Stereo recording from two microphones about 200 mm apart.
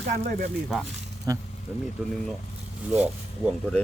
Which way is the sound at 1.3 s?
15° right (ahead or behind).